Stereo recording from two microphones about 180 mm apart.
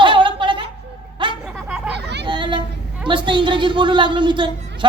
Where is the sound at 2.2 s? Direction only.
25° right (ahead or behind).